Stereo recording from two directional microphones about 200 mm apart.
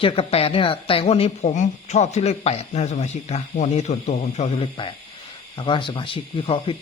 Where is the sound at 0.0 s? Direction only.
30° left (ahead or behind).